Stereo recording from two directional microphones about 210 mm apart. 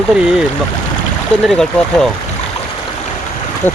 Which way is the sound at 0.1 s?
5° right (ahead or behind).